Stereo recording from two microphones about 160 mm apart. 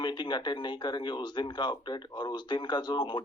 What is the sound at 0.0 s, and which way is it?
A man's voice, 30° left (ahead or behind).